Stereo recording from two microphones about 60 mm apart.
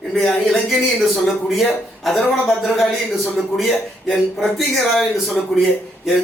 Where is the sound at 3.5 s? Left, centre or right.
Centre.